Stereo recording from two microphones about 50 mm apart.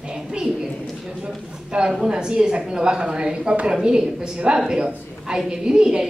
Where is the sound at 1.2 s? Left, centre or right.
Centre.